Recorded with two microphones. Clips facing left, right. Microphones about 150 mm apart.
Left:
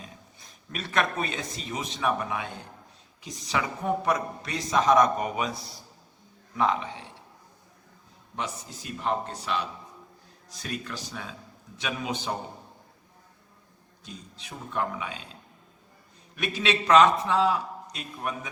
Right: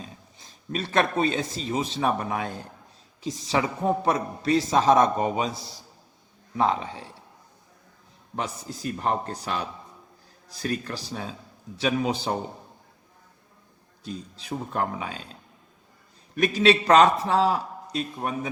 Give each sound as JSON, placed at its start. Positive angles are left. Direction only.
{"t": 0.0, "sound": "a sound", "side_deg": -30}
{"t": 1.5, "sound": "speech", "side_deg": -30}
{"t": 3.4, "sound": "speech", "side_deg": -25}
{"t": 5.5, "sound": "a man's voice", "side_deg": 0}
{"t": 6.6, "sound": "speech", "side_deg": -35}
{"t": 8.7, "sound": "speech", "side_deg": -40}
{"t": 14.0, "sound": "speech", "side_deg": -35}
{"t": 16.3, "sound": "speech", "side_deg": -40}